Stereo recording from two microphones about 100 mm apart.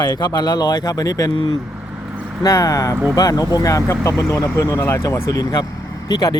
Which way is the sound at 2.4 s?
35° left (ahead or behind).